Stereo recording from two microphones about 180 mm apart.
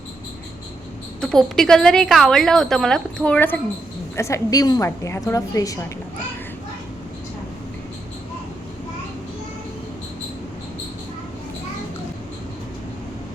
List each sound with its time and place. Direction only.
1.2 s a woman's voice: 5° left (ahead or behind); by 5.8 s 20° left (ahead or behind)